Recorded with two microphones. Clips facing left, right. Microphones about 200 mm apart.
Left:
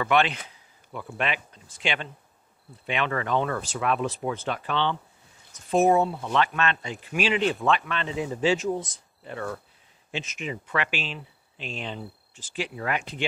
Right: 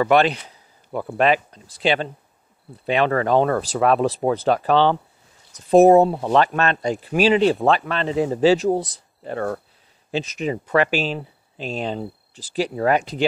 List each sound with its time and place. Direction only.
0.0 s speech: 40° right (ahead or behind)